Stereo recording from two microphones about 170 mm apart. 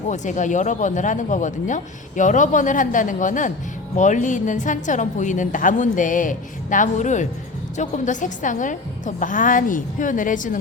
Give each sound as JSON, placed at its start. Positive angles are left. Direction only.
{"t": 0.1, "sound": "speech", "side_deg": 45}